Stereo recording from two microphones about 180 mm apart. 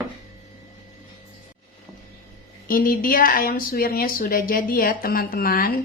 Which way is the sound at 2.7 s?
50° left (ahead or behind).